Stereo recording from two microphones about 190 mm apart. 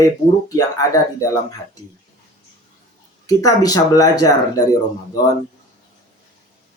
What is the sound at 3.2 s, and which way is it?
Speech, 20° left (ahead or behind).